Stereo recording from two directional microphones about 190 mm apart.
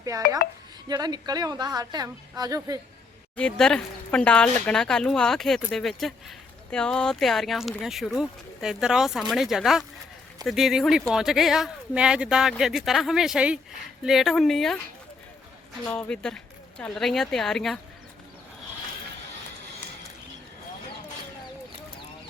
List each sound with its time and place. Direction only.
0.1 s a woman's voice: 15° right (ahead or behind)
3.3 s speech: 5° left (ahead or behind)
15.9 s speech: 5° left (ahead or behind)